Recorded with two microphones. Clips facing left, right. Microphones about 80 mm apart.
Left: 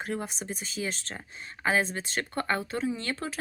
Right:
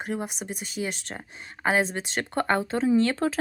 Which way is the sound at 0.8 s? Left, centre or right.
Right.